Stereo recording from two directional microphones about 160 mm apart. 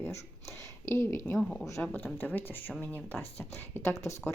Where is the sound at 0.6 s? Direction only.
15° left (ahead or behind).